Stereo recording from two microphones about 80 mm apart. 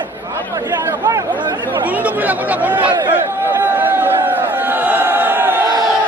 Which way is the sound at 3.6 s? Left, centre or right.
Right.